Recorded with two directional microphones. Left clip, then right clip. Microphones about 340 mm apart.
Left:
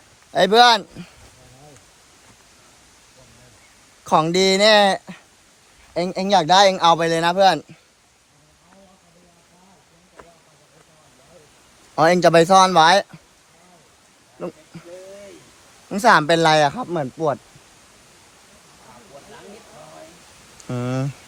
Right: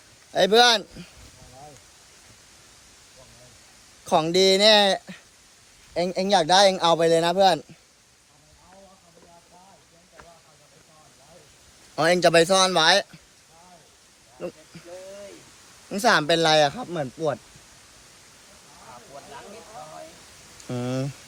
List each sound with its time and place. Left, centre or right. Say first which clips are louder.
0.3 s a man's voice: left 4 dB; centre
4.0 s a man's voice: left 3 dB; left
11.9 s speech: left 4 dB; centre
15.9 s a man's voice: left 5 dB; centre
20.8 s a man's voice: left 3 dB; left